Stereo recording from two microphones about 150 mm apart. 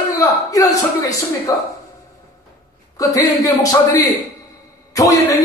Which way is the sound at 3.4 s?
25° left (ahead or behind).